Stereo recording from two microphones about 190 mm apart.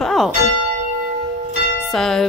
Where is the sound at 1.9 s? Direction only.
Centre (ahead or behind).